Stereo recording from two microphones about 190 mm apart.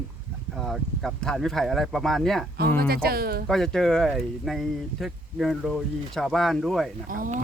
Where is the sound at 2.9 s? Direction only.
55° right (ahead or behind).